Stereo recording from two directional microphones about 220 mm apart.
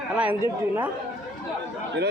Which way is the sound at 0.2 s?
5° right (ahead or behind).